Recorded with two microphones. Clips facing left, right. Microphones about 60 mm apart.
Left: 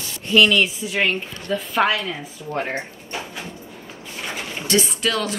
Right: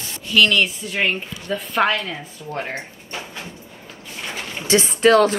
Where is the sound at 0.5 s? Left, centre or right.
Centre.